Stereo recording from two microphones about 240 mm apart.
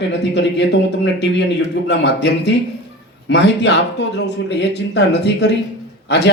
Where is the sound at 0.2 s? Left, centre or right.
Left.